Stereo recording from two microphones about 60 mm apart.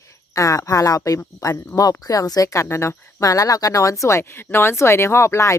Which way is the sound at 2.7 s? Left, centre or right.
Left.